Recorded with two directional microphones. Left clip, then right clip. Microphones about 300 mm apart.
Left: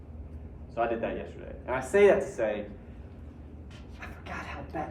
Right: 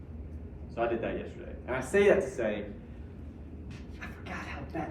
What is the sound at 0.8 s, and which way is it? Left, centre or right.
Speech, centre.